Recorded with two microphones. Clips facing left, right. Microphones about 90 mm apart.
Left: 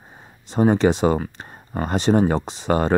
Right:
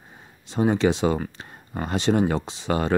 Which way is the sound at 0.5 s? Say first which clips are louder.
Left 4 dB; 45° left (ahead or behind).